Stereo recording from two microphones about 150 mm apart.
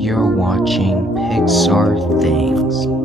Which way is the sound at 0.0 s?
Centre (ahead or behind).